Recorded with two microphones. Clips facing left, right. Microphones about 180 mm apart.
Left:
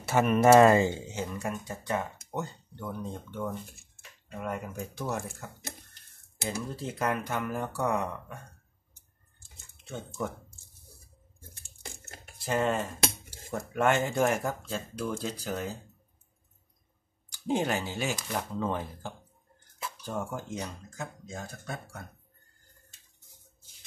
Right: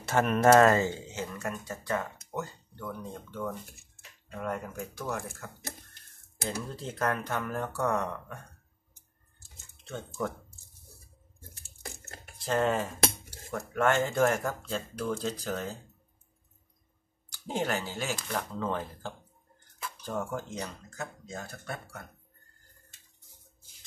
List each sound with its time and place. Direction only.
0.0 s speech: 5° left (ahead or behind)
4.7 s speech: 20° left (ahead or behind)
6.7 s speech: 10° left (ahead or behind)
9.8 s speech: 10° left (ahead or behind)
12.6 s speech: centre (ahead or behind)
13.5 s speech: 15° left (ahead or behind)
17.3 s speech: 15° left (ahead or behind)